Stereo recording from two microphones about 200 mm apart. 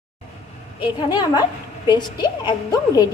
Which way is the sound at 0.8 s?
25° left (ahead or behind).